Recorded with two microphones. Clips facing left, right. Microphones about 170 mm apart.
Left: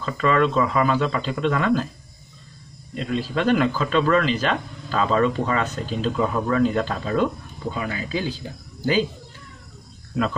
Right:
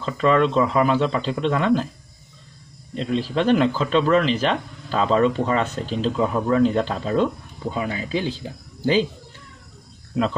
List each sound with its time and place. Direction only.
0.0 s speech: 25° right (ahead or behind)
3.0 s speech: 25° right (ahead or behind)